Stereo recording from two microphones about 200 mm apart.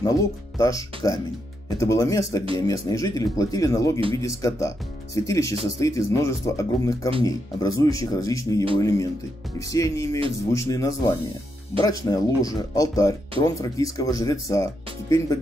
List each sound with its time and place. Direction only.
0.0 s speech: 15° left (ahead or behind)